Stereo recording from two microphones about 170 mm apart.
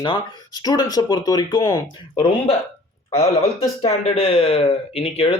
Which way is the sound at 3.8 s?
35° left (ahead or behind).